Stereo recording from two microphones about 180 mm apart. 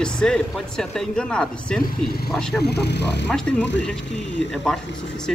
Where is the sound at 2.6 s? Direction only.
65° left (ahead or behind).